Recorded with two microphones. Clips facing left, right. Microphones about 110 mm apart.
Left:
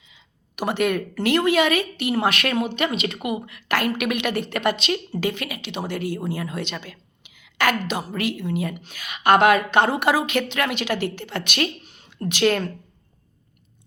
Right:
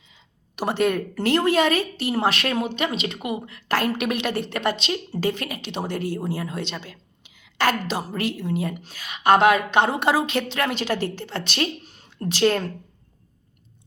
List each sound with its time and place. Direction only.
0.1 s a woman's voice: 35° right (ahead or behind)